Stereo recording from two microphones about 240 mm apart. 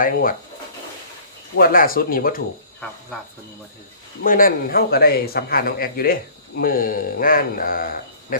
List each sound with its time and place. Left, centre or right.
0.0 s a man's voice: left
1.5 s a man's voice: left
4.2 s a man's voice: left